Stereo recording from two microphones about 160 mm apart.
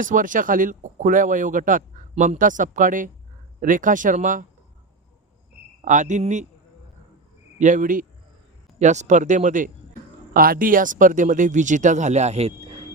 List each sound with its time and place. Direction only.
0.0 s speech: 55° right (ahead or behind)
5.8 s speech: 50° right (ahead or behind)
7.6 s speech: 55° right (ahead or behind)